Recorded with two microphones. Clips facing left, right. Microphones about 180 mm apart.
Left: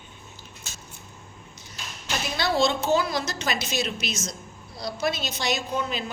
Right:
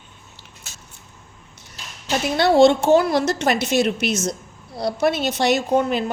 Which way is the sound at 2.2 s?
65° right (ahead or behind).